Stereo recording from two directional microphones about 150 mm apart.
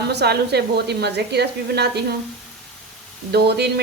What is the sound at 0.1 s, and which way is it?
Speech, 90° right.